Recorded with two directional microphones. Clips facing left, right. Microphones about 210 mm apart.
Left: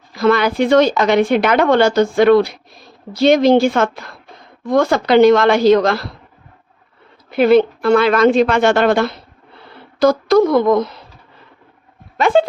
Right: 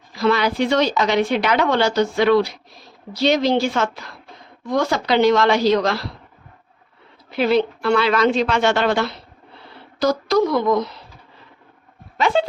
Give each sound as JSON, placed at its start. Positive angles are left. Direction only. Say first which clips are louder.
{"t": 0.1, "sound": "speech", "louder": "left 4 dB", "side_deg": 50}
{"t": 7.3, "sound": "speech", "louder": "left 7 dB", "side_deg": 55}
{"t": 12.1, "sound": "speech", "louder": "left 5 dB", "side_deg": 50}